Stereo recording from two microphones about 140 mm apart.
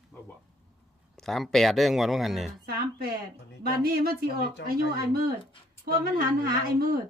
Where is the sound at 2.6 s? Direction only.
90° right.